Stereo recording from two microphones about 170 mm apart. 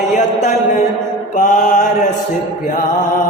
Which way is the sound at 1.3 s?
50° left (ahead or behind).